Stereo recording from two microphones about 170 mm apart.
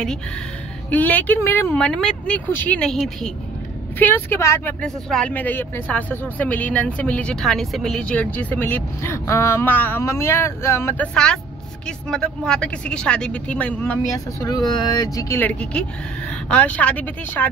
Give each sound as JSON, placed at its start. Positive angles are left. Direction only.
{"t": 0.8, "sound": "speech", "side_deg": 10}
{"t": 14.4, "sound": "speech", "side_deg": 25}